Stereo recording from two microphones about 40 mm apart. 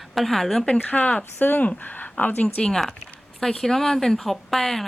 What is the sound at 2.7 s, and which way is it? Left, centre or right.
A woman's voice, centre.